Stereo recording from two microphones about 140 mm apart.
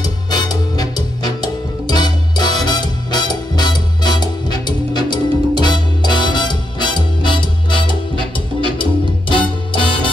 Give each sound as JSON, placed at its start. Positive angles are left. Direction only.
{"t": 0.0, "sound": "music", "side_deg": 30}
{"t": 9.3, "sound": "music", "side_deg": 35}